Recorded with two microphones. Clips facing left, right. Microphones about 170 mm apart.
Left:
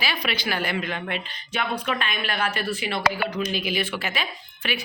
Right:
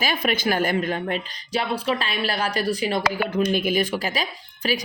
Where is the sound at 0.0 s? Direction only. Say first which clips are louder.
Right 5 dB; 45° right (ahead or behind).